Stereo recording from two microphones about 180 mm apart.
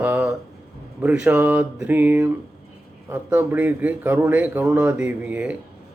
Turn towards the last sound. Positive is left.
turn(degrees=-5)  # may be behind; listen again after turning